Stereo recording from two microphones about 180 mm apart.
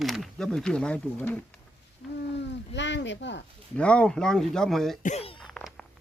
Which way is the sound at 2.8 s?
80° left.